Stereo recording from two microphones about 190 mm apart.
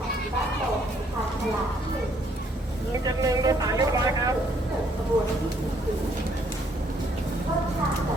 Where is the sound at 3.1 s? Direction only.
20° right (ahead or behind).